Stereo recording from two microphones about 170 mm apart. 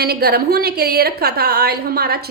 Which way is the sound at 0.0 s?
65° right (ahead or behind).